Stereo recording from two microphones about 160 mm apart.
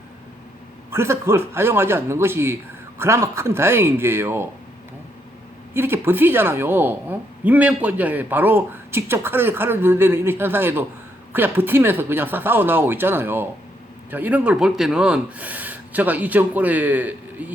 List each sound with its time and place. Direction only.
0.9 s speech: 15° right (ahead or behind)
5.7 s speech: 15° right (ahead or behind)